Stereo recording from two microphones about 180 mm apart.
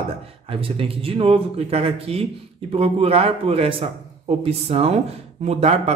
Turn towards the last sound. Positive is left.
turn(degrees=-35)  # may be behind; listen again after turning